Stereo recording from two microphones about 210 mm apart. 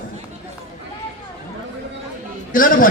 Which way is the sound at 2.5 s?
40° left (ahead or behind).